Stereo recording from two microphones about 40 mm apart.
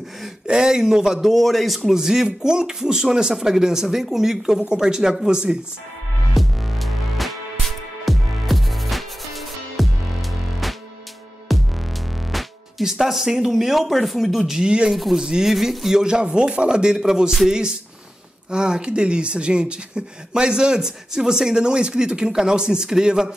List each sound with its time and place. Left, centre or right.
0.5 s speech: centre
1.2 s a man's voice: centre
1.9 s speech: centre
6.3 s music: centre
11.5 s music: centre
12.8 s speech: centre
15.5 s a man's voice: centre
16.0 s speech: right